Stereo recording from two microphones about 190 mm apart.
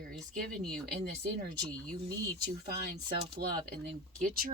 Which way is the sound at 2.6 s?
55° right (ahead or behind).